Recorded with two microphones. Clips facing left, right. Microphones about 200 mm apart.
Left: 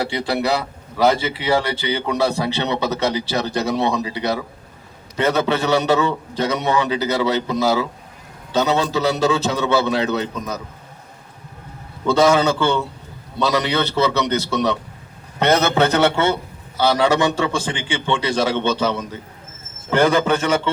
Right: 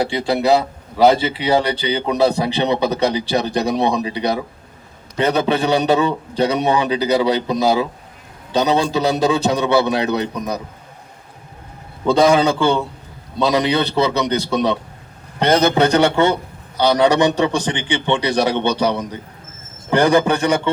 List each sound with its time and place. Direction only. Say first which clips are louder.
0.0 s a man's voice: right 3 dB; 15° right (ahead or behind)
12.0 s a man's voice: right 2 dB; 15° right (ahead or behind)